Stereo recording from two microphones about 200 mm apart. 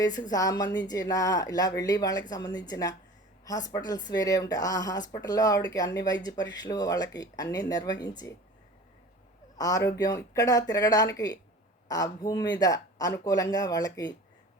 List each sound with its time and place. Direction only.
0.0 s speech: 20° left (ahead or behind)
9.6 s speech: 15° left (ahead or behind)